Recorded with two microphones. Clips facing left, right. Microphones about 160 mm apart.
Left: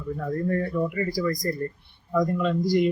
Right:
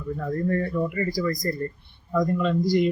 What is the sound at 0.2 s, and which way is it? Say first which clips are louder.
Speech: right 1 dB; 5° left (ahead or behind).